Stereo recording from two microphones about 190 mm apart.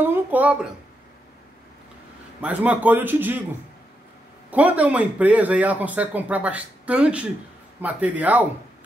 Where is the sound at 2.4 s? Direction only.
10° right (ahead or behind).